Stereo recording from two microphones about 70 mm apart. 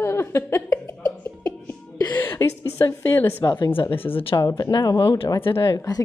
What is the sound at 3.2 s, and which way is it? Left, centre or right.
Speech, left.